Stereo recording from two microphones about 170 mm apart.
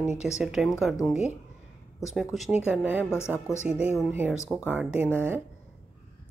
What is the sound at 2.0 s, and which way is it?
A woman's voice, centre (ahead or behind).